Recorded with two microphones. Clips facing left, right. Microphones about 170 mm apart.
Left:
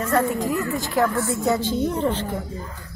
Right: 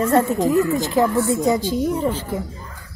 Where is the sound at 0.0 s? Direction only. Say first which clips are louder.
Right 4 dB; 25° right (ahead or behind).